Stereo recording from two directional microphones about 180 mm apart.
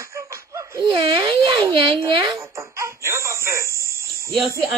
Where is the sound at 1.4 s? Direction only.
25° right (ahead or behind).